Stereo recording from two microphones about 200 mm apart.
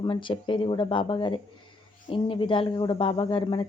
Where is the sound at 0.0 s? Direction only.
25° left (ahead or behind).